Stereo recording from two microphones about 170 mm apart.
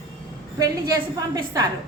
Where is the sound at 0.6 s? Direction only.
20° right (ahead or behind).